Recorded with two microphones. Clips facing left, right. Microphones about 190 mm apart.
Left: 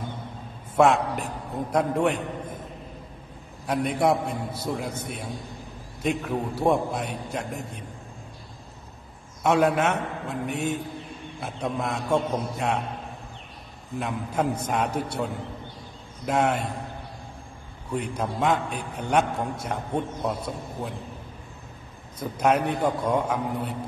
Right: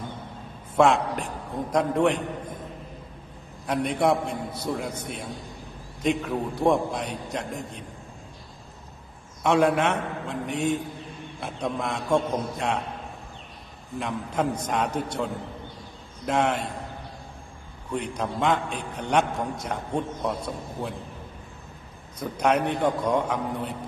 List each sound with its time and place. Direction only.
0.7 s a man's voice: 5° left (ahead or behind)
3.6 s a man's voice: 5° left (ahead or behind)
9.4 s a man's voice: 5° left (ahead or behind)
13.9 s a man's voice: 5° left (ahead or behind)
16.3 s a man's voice: 5° left (ahead or behind)
17.9 s a man's voice: 5° left (ahead or behind)
22.2 s a man's voice: 5° left (ahead or behind)